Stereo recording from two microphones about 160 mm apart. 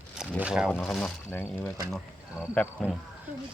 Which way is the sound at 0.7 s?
5° left (ahead or behind).